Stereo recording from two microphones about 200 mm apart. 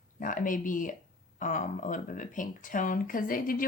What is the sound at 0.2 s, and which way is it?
Speech, 40° left (ahead or behind).